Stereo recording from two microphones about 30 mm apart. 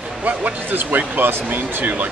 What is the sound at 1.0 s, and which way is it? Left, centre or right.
Speech, right.